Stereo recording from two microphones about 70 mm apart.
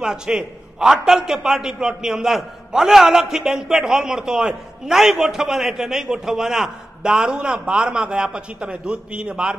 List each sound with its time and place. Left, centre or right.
0.0 s a man's voice: centre